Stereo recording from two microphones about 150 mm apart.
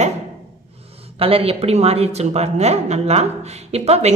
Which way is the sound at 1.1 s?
40° right (ahead or behind).